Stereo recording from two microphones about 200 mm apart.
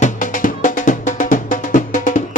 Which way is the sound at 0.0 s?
40° left (ahead or behind).